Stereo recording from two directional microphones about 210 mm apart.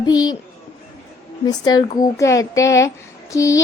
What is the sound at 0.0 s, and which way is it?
Speech, 20° left (ahead or behind).